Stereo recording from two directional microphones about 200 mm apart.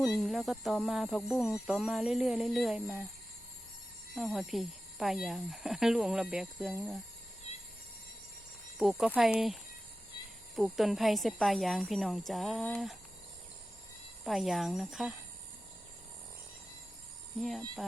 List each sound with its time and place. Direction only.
0.0 s speech: centre (ahead or behind)
4.1 s speech: centre (ahead or behind)
8.8 s speech: centre (ahead or behind)
14.3 s speech: centre (ahead or behind)